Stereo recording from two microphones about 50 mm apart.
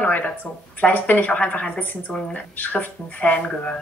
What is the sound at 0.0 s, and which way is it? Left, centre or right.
Speech, left.